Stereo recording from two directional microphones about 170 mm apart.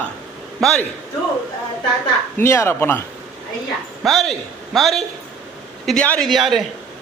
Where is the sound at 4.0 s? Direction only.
Centre (ahead or behind).